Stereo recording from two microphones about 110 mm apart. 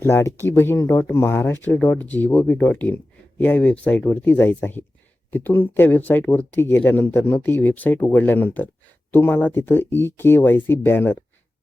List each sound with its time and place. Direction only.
0.0 s speech: 25° left (ahead or behind)